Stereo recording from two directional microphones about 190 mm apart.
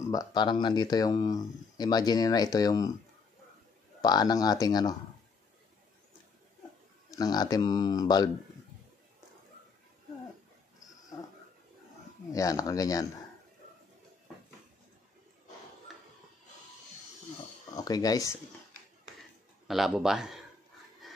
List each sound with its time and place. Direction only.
0.1 s speech: 20° left (ahead or behind)
4.0 s speech: 20° left (ahead or behind)
7.1 s speech: 20° left (ahead or behind)
12.3 s speech: 20° left (ahead or behind)
15.9 s a sound: centre (ahead or behind)
17.7 s speech: 20° left (ahead or behind)
19.7 s speech: centre (ahead or behind)
21.0 s a sound: centre (ahead or behind)